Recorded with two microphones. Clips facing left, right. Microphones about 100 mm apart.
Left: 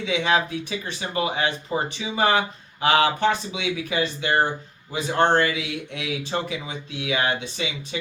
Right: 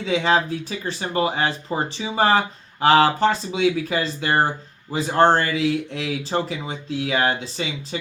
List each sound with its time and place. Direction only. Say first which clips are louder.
0.0 s speech: right 2 dB; 35° right (ahead or behind)